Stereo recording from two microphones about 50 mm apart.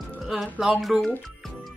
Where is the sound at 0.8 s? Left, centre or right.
Centre.